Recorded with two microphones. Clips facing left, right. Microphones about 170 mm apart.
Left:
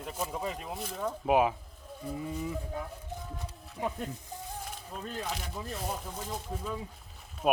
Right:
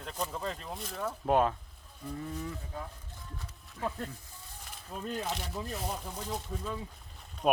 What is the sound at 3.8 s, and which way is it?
Speech, 15° left (ahead or behind).